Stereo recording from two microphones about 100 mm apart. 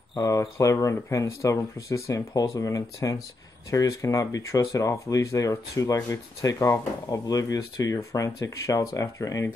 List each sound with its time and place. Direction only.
0.2 s speech: 35° left (ahead or behind)